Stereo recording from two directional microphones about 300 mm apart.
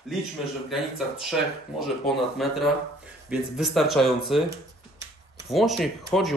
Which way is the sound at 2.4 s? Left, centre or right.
Centre.